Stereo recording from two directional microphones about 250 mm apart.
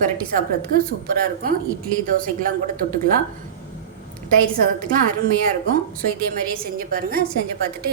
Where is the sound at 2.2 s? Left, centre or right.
Right.